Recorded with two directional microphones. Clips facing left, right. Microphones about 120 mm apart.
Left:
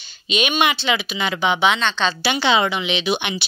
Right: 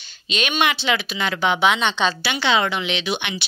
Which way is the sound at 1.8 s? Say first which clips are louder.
Right 1 dB; 15° right (ahead or behind).